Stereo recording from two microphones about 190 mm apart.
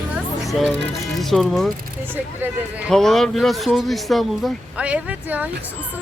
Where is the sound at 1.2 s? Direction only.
Centre (ahead or behind).